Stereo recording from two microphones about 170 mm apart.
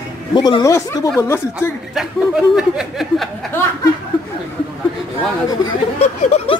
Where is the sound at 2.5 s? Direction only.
Centre (ahead or behind).